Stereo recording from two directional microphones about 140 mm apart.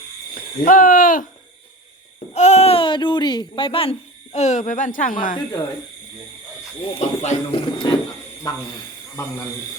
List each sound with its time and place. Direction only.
0.3 s speech: 85° left
2.3 s a child's voice: 50° left (ahead or behind); by 5.4 s 75° left (ahead or behind)
6.8 s a child's voice: 45° left (ahead or behind)
7.8 s a sound: 35° left (ahead or behind)
9.2 s a man's voice: 20° left (ahead or behind)